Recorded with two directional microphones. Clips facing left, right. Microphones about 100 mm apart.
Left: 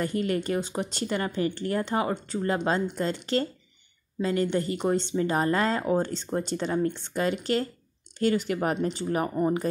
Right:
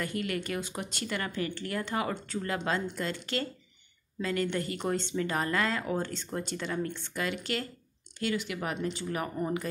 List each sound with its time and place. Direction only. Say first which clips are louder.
0.0 s speech: left 6 dB; 30° left (ahead or behind)
4.2 s speech: left 5 dB; 25° left (ahead or behind)